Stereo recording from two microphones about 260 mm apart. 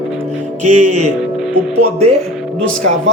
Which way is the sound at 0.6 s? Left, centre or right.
Right.